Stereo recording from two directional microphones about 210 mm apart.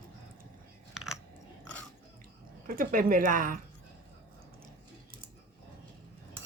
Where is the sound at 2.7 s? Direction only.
40° right (ahead or behind).